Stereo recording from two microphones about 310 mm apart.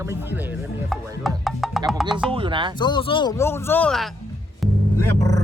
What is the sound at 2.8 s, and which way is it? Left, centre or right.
Speech, centre.